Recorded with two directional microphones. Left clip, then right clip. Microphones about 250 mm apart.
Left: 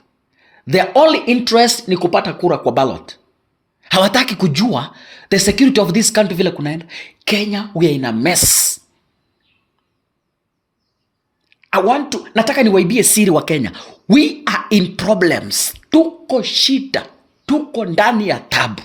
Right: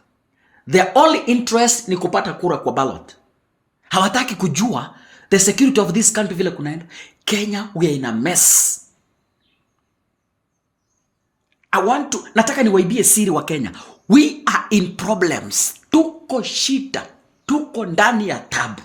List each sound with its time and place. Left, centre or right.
0.5 s speech: left
11.4 s speech: left